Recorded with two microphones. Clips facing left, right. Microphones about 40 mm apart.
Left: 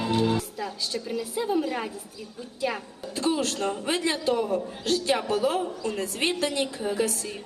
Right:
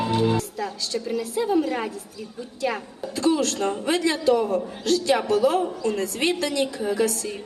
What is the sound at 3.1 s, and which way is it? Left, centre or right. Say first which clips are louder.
Speech: right 4 dB; centre.